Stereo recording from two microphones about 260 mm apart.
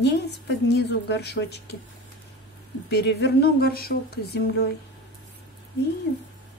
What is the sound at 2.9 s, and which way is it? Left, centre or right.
A woman's voice, left.